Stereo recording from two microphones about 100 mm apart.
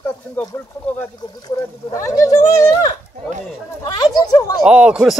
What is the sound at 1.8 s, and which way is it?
Speech, 30° left (ahead or behind).